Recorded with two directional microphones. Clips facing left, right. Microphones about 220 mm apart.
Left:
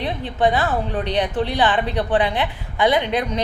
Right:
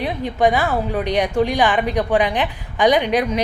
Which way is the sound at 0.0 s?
10° right (ahead or behind).